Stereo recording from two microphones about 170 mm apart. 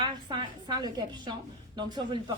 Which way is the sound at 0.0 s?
25° right (ahead or behind).